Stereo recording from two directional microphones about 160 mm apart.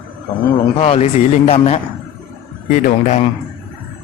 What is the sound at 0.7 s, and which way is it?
A man's voice, 40° left (ahead or behind).